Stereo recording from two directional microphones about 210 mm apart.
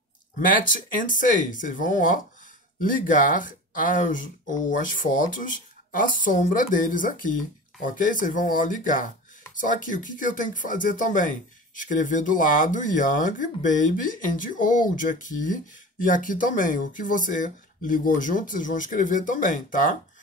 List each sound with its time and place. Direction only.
0.9 s speech: 40° left (ahead or behind)